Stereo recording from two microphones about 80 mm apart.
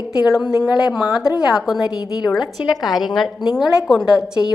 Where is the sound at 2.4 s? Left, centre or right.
Left.